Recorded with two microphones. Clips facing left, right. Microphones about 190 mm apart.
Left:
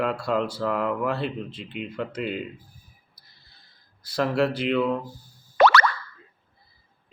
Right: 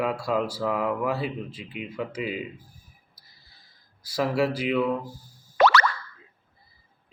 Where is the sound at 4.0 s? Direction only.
5° right (ahead or behind).